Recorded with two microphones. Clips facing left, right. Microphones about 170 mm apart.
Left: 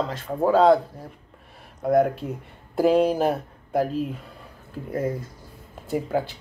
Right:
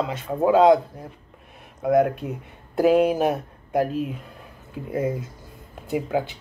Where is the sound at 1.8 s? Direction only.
5° right (ahead or behind).